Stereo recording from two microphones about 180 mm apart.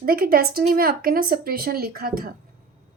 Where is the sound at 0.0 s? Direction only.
55° right (ahead or behind).